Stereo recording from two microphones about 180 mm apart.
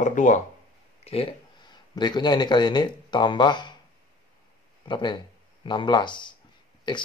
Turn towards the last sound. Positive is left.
turn(degrees=25)  # may be behind; listen again after turning